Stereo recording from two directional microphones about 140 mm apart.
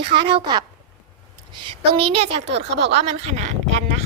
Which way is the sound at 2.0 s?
45° right (ahead or behind).